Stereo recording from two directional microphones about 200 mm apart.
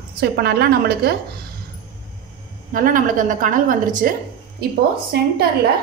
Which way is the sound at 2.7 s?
40° right (ahead or behind).